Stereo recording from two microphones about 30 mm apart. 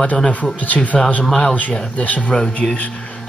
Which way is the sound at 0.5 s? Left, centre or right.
Left.